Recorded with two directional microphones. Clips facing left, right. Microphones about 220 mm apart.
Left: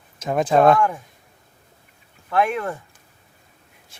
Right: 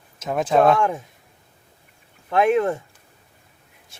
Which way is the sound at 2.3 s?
20° right (ahead or behind).